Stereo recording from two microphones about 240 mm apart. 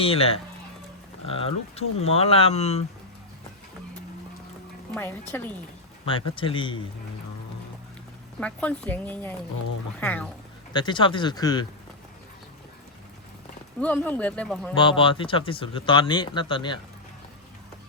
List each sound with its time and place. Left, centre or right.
0.0 s speech: left
4.9 s speech: centre
6.3 s speech: left
8.4 s speech: centre
10.7 s speech: centre
13.7 s speech: centre
14.8 s speech: left